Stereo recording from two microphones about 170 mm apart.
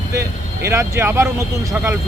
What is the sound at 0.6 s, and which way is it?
Speech, 15° right (ahead or behind).